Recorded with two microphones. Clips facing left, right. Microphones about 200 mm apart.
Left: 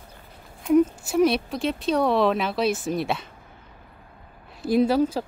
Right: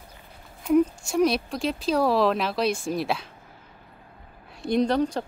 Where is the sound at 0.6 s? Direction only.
Centre (ahead or behind).